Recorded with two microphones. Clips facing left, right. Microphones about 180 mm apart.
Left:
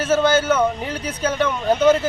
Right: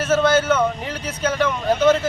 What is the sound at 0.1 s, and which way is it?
Speech, 10° left (ahead or behind).